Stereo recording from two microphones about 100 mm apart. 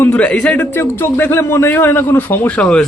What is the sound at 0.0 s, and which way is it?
Speech, 15° left (ahead or behind).